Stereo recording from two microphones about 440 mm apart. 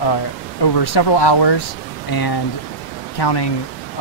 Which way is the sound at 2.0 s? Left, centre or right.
Left.